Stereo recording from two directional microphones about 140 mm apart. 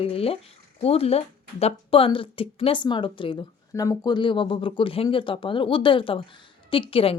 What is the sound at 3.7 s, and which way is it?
Speech, 25° left (ahead or behind).